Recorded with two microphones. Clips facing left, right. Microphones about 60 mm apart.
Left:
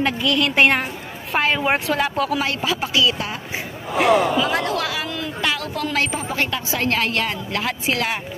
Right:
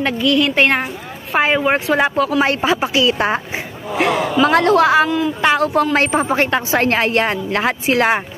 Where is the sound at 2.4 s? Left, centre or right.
Right.